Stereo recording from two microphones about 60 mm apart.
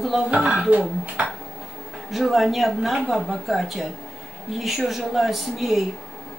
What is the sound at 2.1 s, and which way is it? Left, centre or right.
A woman's voice, centre.